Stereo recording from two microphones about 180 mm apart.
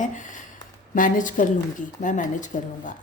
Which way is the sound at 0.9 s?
50° left (ahead or behind).